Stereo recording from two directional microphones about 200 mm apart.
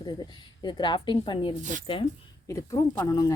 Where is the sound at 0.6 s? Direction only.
20° left (ahead or behind).